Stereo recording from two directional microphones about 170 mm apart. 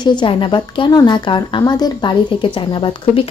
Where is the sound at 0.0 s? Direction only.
30° left (ahead or behind).